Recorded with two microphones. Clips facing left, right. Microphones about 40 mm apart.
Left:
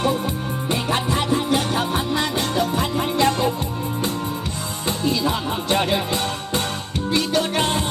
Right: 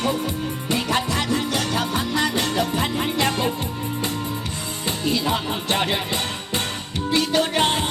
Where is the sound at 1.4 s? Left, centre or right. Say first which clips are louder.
Left 2 dB; left.